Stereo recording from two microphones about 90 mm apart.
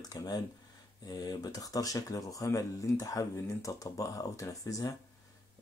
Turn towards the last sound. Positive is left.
turn(degrees=40)  # may be behind; listen again after turning